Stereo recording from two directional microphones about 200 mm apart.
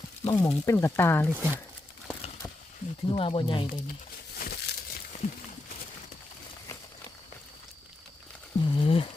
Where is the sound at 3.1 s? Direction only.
25° left (ahead or behind).